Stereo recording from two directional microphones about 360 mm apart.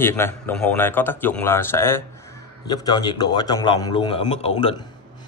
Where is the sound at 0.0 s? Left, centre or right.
Centre.